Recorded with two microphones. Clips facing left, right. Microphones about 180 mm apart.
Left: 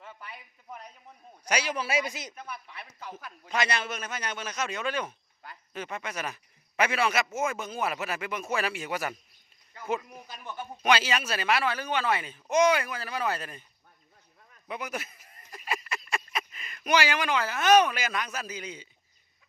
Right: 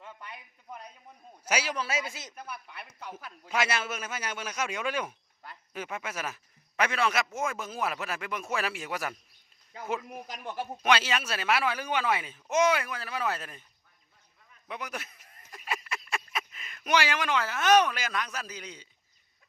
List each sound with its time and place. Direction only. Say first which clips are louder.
0.0 s a sound: even; 5° left (ahead or behind)
1.5 s a man's voice: left 1 dB; 5° right (ahead or behind)
1.7 s a man's voice: left 3 dB; 10° left (ahead or behind)
2.3 s a man's voice: left 1 dB; 5° right (ahead or behind)
10.4 s speech: right 3 dB; 35° right (ahead or behind)
10.8 s a man's voice: left 2 dB; centre (ahead or behind)
14.7 s speech: left 3 dB; centre (ahead or behind)